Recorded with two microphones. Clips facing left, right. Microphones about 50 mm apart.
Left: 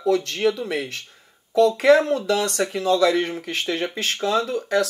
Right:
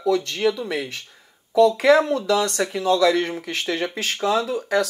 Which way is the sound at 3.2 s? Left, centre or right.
Centre.